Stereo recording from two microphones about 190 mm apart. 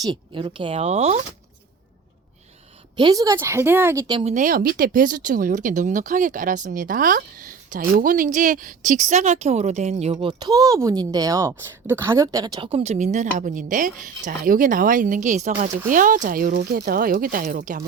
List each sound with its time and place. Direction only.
0.0 s speech: 25° right (ahead or behind)
3.0 s a woman's voice: 20° right (ahead or behind)
4.2 s a woman's voice: 35° right (ahead or behind)
10.2 s a woman's voice: 20° right (ahead or behind); by 17.8 s 45° right (ahead or behind)